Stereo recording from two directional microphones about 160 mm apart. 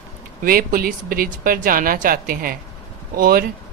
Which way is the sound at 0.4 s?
60° right (ahead or behind).